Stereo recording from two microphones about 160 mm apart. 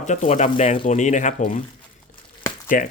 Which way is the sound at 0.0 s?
50° left (ahead or behind).